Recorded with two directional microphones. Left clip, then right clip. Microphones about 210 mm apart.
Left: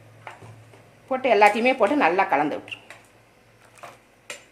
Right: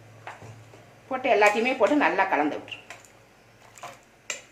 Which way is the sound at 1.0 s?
50° left (ahead or behind).